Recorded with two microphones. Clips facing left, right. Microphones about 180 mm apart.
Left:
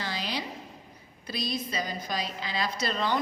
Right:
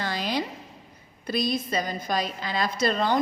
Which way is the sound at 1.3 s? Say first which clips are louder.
Right 6 dB; 50° right (ahead or behind).